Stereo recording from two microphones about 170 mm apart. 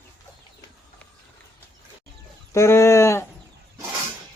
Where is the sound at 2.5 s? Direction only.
15° left (ahead or behind).